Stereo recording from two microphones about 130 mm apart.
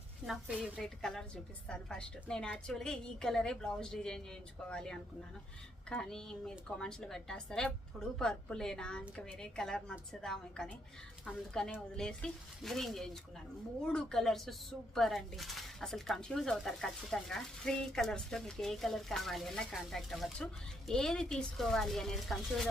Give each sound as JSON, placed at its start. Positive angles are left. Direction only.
{"t": 0.3, "sound": "speech", "side_deg": 0}